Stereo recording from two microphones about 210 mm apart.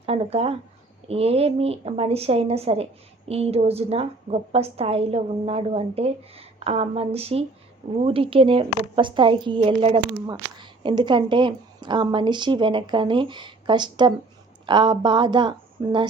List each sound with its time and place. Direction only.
0.0 s a woman's voice: 30° right (ahead or behind)